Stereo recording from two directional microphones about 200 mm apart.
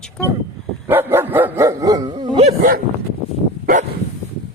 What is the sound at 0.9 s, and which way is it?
Dog, 10° right (ahead or behind).